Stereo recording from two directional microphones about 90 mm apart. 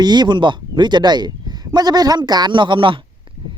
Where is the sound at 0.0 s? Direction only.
55° right (ahead or behind); by 3.0 s 70° right (ahead or behind).